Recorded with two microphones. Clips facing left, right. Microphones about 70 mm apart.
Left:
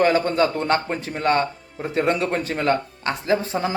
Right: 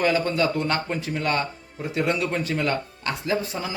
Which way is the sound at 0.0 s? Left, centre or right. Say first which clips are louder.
Left 4 dB; left.